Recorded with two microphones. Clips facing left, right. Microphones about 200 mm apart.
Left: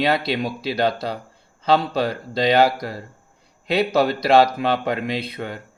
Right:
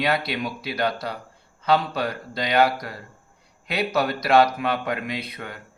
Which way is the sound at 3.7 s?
30° left (ahead or behind).